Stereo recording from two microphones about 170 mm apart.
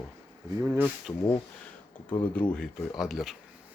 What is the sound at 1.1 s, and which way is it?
Speech, 15° left (ahead or behind).